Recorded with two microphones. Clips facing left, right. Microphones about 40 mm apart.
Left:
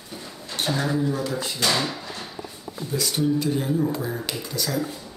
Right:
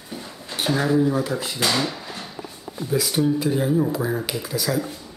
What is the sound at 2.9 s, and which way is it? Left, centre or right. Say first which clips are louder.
Speech: right 2 dB; centre.